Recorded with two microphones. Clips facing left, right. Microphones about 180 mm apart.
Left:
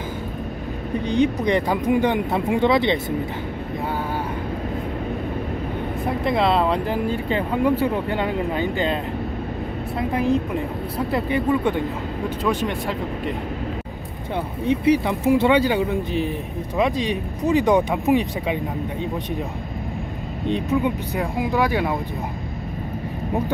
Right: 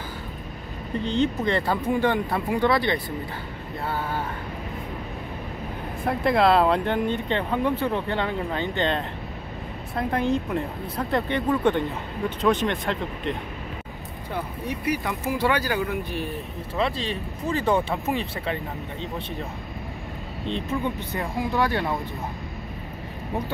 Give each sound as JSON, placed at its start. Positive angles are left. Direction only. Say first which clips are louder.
{"t": 1.0, "sound": "speech", "louder": "left 4 dB", "side_deg": 15}
{"t": 6.0, "sound": "speech", "louder": "right 1 dB", "side_deg": 0}
{"t": 14.3, "sound": "speech", "louder": "left 8 dB", "side_deg": 25}
{"t": 20.5, "sound": "speech", "louder": "left 6 dB", "side_deg": 10}